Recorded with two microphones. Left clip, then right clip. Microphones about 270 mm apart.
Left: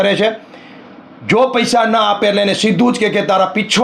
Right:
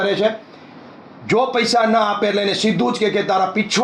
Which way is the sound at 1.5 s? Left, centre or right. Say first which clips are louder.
Left 3 dB; left.